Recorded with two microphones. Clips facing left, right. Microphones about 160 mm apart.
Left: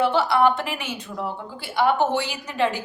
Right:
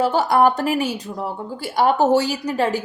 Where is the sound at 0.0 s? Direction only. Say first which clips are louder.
Right 3 dB; 40° right (ahead or behind).